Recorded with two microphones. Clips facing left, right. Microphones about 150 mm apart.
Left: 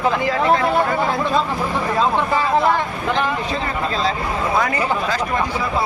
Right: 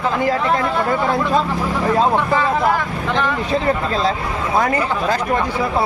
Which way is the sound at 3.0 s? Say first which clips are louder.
Even; 15° left (ahead or behind).